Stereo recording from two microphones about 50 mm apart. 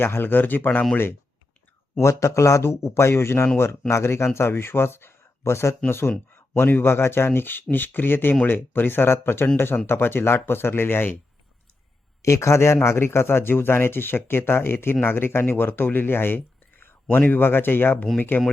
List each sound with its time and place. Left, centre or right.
0.0 s speech: left
2.0 s speech: left
5.9 s speech: left
12.2 s speech: left